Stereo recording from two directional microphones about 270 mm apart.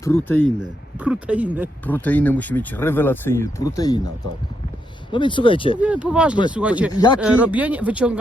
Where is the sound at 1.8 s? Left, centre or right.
Centre.